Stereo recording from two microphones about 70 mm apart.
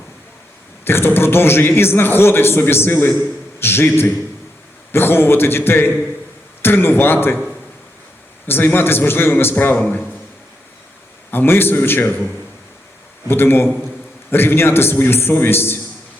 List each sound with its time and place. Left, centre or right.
0.9 s a man's voice: left
8.4 s a man's voice: left
11.3 s a man's voice: left
13.2 s a man's voice: left